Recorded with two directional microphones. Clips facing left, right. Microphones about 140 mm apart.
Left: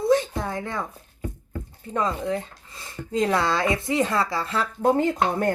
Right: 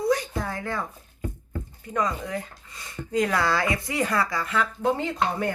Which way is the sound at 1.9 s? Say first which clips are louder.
Left 2 dB; 25° left (ahead or behind).